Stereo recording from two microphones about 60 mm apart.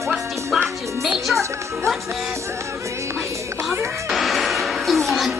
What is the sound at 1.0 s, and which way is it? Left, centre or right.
Music, centre.